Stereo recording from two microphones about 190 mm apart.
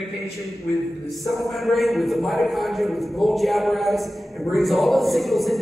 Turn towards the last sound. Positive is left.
turn(degrees=0)  # may be behind; listen again after turning